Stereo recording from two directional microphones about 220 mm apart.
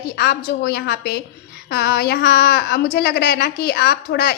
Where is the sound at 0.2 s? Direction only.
45° left (ahead or behind).